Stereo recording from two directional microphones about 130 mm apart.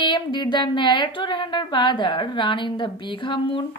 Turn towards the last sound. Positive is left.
turn(degrees=40)  # may be behind; listen again after turning